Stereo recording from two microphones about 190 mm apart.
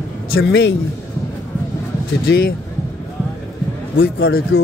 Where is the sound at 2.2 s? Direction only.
55° left (ahead or behind).